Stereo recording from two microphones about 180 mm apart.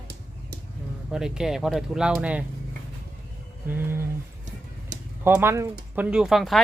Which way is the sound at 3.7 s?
10° right (ahead or behind).